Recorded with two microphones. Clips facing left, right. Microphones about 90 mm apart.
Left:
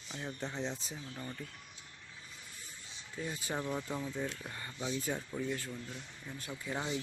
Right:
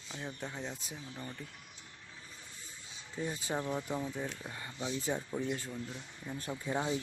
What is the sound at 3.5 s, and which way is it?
Speech, 10° right (ahead or behind).